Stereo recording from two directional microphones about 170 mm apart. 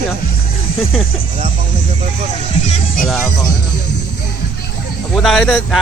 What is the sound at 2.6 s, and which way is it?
Music, 50° left (ahead or behind).